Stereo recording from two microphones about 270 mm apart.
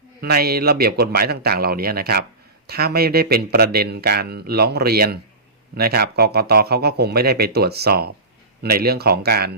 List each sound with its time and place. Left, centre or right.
0.2 s speech: right